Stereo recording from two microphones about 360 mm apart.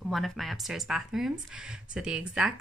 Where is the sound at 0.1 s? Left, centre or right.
Centre.